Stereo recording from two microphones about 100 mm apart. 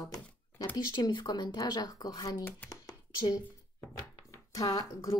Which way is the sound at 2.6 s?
40° left (ahead or behind).